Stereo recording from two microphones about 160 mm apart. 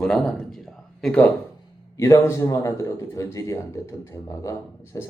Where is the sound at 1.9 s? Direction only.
20° left (ahead or behind).